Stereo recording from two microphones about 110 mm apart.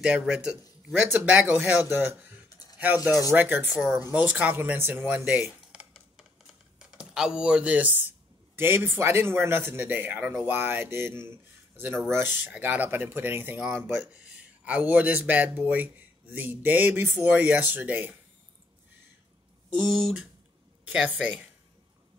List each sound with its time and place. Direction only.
0.0 s speech: 5° right (ahead or behind)
19.9 s speech: centre (ahead or behind)
20.8 s speech: 10° right (ahead or behind)